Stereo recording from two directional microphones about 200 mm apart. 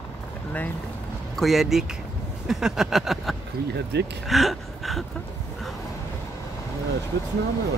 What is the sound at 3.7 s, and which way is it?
Speech, 55° right (ahead or behind).